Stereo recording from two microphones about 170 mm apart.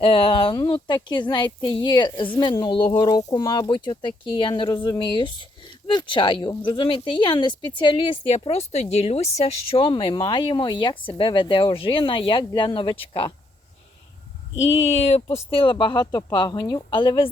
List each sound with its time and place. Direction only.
0.0 s speech: 30° left (ahead or behind)
14.5 s speech: 90° left
14.8 s speech: 40° left (ahead or behind)